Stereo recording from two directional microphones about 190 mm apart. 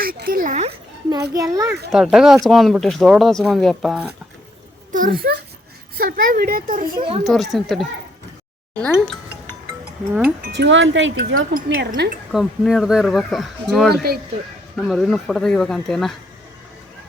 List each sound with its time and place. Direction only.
0.0 s a woman's voice: 50° right (ahead or behind)
1.3 s a child's voice: 20° right (ahead or behind)
1.9 s speech: centre (ahead or behind)
4.9 s a child's voice: 45° right (ahead or behind)
7.3 s speech: centre (ahead or behind)
10.4 s speech: 70° right (ahead or behind)
11.5 s a woman's voice: 55° right (ahead or behind)
12.3 s speech: centre (ahead or behind)
13.9 s speech: 55° right (ahead or behind)
14.8 s speech: centre (ahead or behind)